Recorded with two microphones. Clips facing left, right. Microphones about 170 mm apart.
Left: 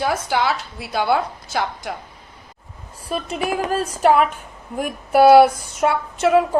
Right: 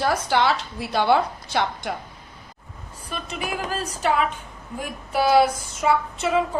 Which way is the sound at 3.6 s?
55° left (ahead or behind).